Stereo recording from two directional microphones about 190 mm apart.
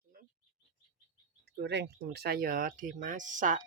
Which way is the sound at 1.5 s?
60° right (ahead or behind).